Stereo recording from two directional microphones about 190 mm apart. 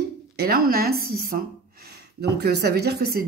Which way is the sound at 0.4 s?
50° right (ahead or behind).